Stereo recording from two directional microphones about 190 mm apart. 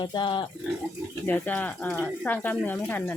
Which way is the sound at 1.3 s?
10° left (ahead or behind).